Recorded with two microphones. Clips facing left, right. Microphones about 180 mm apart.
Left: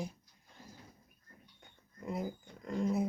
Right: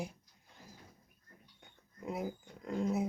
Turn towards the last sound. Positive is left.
turn(degrees=-5)  # may be behind; listen again after turning